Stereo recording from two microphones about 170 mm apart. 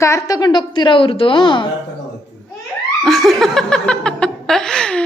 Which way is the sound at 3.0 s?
Centre (ahead or behind).